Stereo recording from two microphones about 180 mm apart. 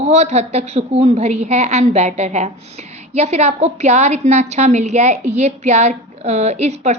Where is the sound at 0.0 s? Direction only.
40° right (ahead or behind).